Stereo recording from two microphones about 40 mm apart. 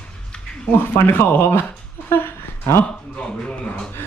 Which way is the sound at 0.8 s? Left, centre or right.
Left.